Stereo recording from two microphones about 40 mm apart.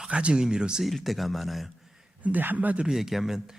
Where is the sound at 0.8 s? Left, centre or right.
Centre.